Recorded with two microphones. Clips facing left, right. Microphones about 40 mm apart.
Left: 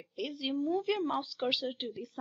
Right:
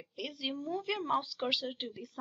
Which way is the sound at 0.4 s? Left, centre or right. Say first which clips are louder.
Left 5 dB; centre.